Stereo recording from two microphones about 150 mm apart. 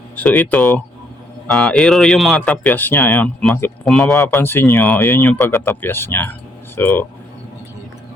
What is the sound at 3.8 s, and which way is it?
Speech, centre (ahead or behind).